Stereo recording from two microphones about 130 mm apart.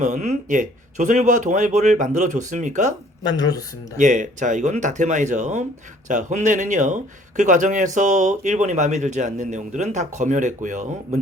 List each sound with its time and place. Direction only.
0.0 s speech: 65° right (ahead or behind)
3.2 s speech: 30° left (ahead or behind)
3.9 s speech: 70° right (ahead or behind)